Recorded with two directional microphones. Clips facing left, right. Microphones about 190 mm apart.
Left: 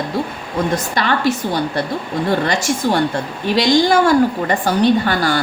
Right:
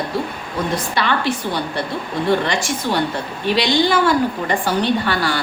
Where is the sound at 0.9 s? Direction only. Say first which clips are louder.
Left 2 dB; 45° left (ahead or behind).